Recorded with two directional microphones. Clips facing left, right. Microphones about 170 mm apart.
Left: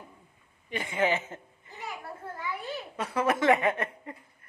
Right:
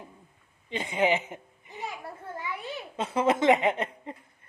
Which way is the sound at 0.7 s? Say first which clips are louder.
Right 2 dB; 20° right (ahead or behind).